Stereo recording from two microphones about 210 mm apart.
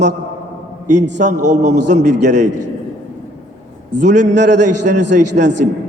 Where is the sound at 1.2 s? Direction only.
35° right (ahead or behind).